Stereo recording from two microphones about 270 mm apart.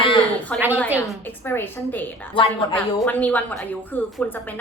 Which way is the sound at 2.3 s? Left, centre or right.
Centre.